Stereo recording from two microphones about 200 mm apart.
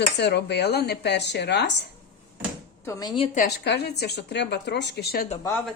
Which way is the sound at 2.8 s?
15° left (ahead or behind).